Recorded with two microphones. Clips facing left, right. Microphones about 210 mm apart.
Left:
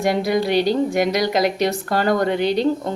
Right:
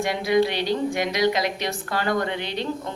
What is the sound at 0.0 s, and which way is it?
Speech, 40° left (ahead or behind).